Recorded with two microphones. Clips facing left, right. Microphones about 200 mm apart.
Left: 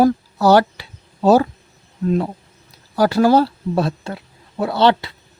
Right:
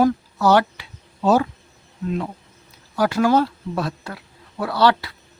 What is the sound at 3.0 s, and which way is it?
Speech, 35° left (ahead or behind).